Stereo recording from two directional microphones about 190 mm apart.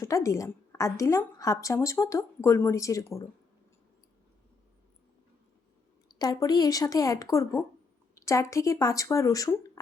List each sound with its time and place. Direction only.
0.0 s a woman's voice: 15° left (ahead or behind)
6.1 s a woman's voice: 20° left (ahead or behind)